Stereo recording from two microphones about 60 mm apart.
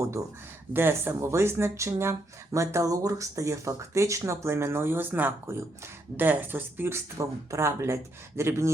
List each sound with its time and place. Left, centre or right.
0.7 s speech: right
7.2 s speech: right